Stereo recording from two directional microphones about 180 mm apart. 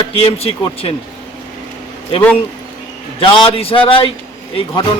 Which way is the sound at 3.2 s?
30° left (ahead or behind).